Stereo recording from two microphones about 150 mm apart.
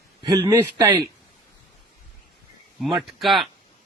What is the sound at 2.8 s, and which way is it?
Speech, centre (ahead or behind).